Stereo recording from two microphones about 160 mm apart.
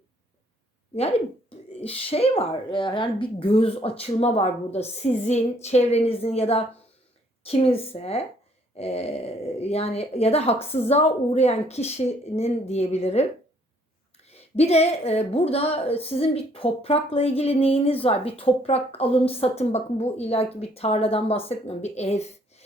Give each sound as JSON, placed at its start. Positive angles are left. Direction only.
{"t": 0.9, "sound": "a woman's voice", "side_deg": 40}
{"t": 14.3, "sound": "a woman's voice", "side_deg": 40}